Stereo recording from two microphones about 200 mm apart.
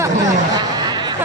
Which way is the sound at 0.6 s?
20° right (ahead or behind).